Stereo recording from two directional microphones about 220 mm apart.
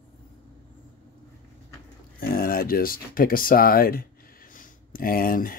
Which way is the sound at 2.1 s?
40° left (ahead or behind).